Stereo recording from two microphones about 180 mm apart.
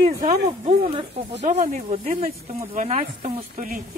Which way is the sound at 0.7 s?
35° right (ahead or behind).